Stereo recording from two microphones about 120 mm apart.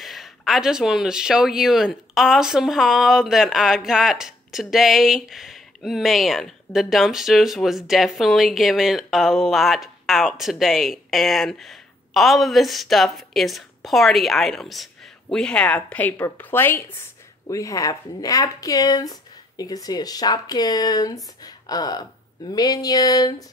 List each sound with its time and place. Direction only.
0.0 s a woman's voice: centre (ahead or behind); by 23.3 s 30° left (ahead or behind)